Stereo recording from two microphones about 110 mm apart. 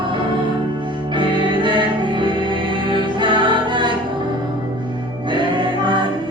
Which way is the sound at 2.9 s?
45° right (ahead or behind).